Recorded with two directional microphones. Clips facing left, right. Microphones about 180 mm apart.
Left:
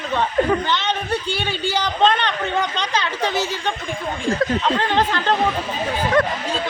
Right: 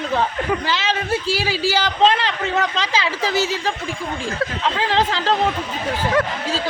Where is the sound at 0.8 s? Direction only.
5° right (ahead or behind).